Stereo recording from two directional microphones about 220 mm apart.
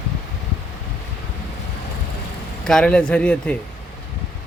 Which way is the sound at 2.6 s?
5° left (ahead or behind).